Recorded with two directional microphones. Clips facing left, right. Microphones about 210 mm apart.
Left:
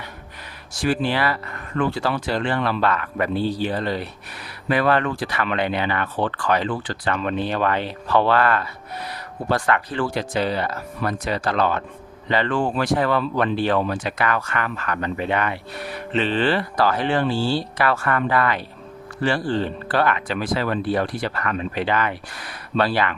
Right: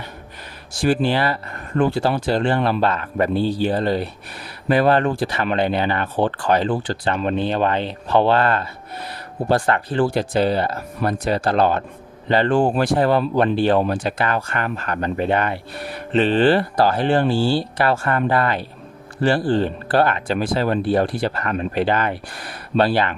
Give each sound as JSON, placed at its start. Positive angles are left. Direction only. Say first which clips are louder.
{"t": 0.7, "sound": "speech", "louder": "right 3 dB", "side_deg": -30}
{"t": 17.3, "sound": "speech", "louder": "right 3 dB", "side_deg": 0}
{"t": 17.7, "sound": "speech", "louder": "right 2 dB", "side_deg": -30}